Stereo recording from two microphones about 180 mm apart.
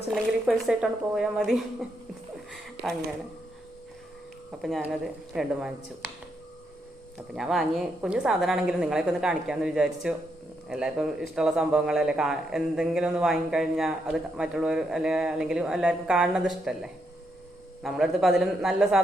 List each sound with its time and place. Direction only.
0.1 s speech: centre (ahead or behind)
4.6 s speech: centre (ahead or behind)
7.3 s speech: centre (ahead or behind)